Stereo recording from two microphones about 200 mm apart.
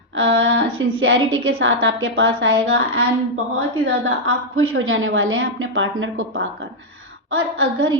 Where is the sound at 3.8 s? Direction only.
90° right.